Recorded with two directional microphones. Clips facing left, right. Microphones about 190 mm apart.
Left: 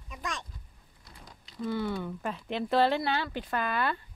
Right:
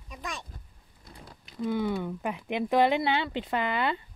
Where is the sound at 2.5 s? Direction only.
15° right (ahead or behind).